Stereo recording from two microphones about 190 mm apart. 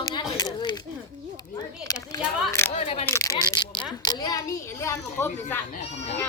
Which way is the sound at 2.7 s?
30° left (ahead or behind).